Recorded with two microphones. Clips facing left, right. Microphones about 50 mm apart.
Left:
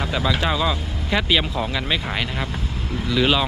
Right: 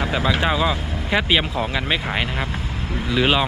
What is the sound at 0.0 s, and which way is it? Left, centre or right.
Speech, centre.